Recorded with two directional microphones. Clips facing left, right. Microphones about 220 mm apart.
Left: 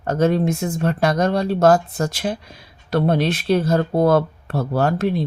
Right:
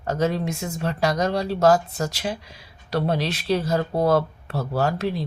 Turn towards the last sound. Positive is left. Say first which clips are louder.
# left 4 dB
turn(degrees=50)  # may be behind; listen again after turning